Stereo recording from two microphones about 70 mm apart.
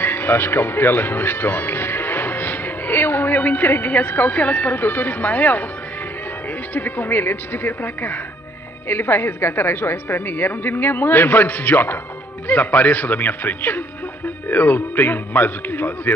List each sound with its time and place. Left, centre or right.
0.0 s speech: left
6.7 s a man's voice: left